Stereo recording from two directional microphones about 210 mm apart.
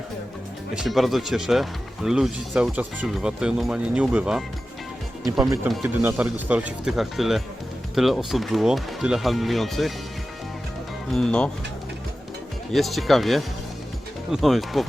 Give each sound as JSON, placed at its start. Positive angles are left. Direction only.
{"t": 0.8, "sound": "speech", "side_deg": 0}
{"t": 5.2, "sound": "speech", "side_deg": -15}
{"t": 5.6, "sound": "speech", "side_deg": -5}
{"t": 11.1, "sound": "speech", "side_deg": 5}
{"t": 12.7, "sound": "speech", "side_deg": 0}